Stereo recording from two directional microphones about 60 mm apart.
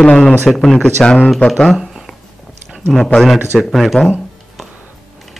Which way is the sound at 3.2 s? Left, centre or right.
Centre.